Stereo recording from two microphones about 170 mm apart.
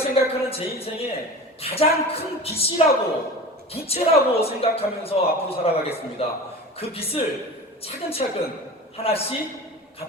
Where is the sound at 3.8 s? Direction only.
35° left (ahead or behind).